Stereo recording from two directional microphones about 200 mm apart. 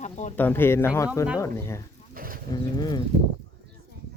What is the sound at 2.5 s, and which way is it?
Speech, 20° left (ahead or behind).